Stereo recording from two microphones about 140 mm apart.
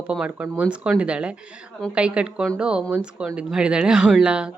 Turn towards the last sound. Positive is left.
turn(degrees=-5)  # may be behind; listen again after turning